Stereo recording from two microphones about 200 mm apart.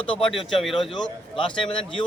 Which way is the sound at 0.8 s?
25° left (ahead or behind).